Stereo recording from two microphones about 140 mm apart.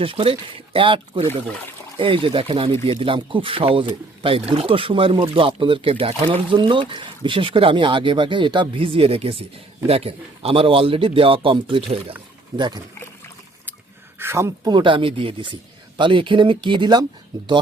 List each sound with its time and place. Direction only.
0.0 s speech: 40° right (ahead or behind)
14.2 s speech: 20° right (ahead or behind)
14.7 s speech: 35° right (ahead or behind)